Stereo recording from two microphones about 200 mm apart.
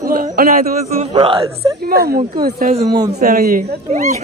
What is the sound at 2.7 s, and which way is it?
Speech, 30° right (ahead or behind).